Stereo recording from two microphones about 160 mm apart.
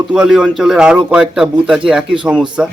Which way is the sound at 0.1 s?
5° right (ahead or behind).